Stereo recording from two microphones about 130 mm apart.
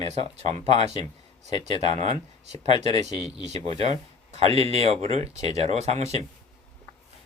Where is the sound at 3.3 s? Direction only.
60° right (ahead or behind).